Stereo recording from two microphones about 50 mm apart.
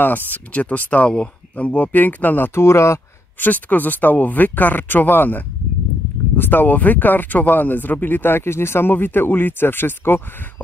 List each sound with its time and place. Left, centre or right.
0.0 s speech: left
2.5 s speech: left
3.3 s speech: left